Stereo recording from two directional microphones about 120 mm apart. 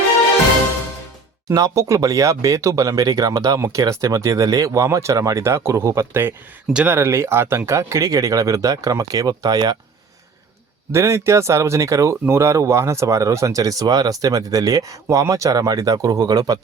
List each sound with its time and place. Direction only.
1.5 s speech: 25° right (ahead or behind)
10.9 s speech: 25° right (ahead or behind)